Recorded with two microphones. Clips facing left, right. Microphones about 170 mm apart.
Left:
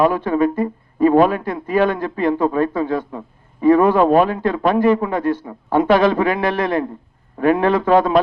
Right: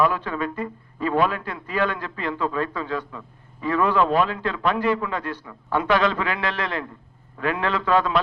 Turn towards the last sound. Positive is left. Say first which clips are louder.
# left 9 dB
turn(degrees=45)  # may be behind; listen again after turning